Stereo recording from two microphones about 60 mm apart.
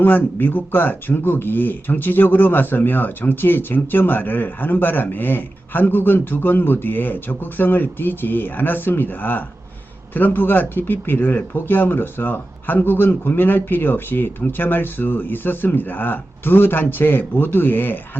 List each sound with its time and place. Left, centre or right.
0.0 s speech: left